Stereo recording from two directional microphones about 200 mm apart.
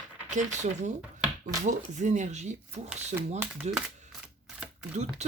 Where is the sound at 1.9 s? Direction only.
35° right (ahead or behind).